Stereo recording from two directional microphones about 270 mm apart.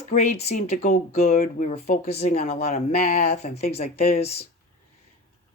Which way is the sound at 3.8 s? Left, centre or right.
Left.